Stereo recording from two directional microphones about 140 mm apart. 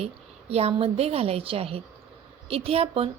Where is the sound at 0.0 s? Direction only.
45° right (ahead or behind).